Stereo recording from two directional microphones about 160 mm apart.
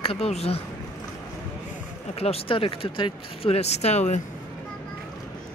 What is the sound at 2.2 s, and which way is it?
Speech, 35° left (ahead or behind).